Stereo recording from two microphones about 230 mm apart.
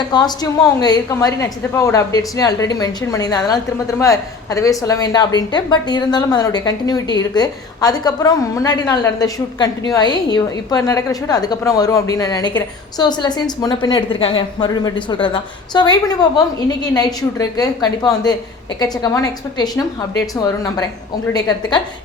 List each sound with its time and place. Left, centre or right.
0.1 s a woman's voice: centre
21.3 s a woman's voice: centre